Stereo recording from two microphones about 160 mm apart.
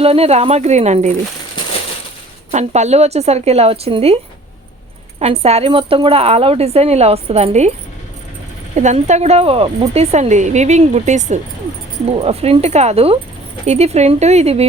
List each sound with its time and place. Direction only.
0.0 s speech: 40° right (ahead or behind)
2.5 s a woman's voice: 45° right (ahead or behind)
5.2 s a woman's voice: 40° right (ahead or behind)
8.7 s a woman's voice: 45° right (ahead or behind)